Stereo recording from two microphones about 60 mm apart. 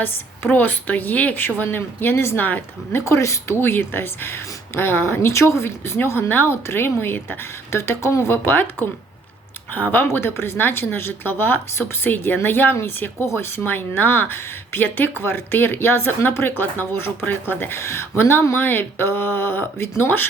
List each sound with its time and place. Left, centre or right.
0.5 s speech: left
3.0 s speech: left
3.6 s a woman's voice: left
9.7 s a woman's voice: left